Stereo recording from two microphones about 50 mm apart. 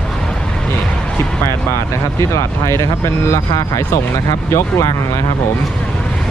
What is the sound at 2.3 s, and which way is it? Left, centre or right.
Speech, left.